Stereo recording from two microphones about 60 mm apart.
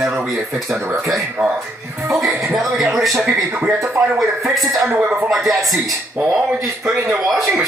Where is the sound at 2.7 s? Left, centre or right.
Centre.